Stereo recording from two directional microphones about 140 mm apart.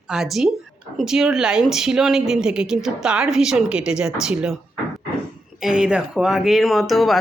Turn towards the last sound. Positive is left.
turn(degrees=0)  # may be behind; listen again after turning